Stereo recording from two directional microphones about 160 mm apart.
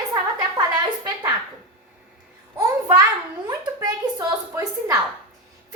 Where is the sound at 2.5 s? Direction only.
25° right (ahead or behind).